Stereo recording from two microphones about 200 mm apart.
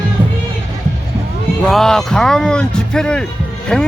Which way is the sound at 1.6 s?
Centre (ahead or behind).